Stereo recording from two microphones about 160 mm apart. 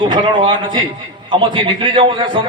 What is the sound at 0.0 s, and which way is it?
A man's voice, 30° right (ahead or behind).